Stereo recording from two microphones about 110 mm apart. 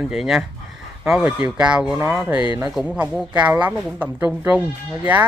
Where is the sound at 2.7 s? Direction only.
10° right (ahead or behind).